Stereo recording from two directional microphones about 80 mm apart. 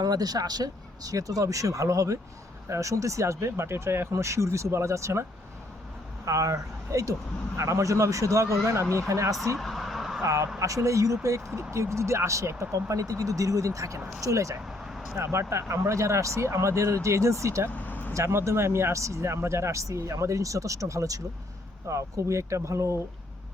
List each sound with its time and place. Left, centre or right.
0.0 s speech: right
6.2 s speech: right
9.6 s vehicle: centre
10.2 s speech: right
17.7 s vehicle: left
18.1 s speech: right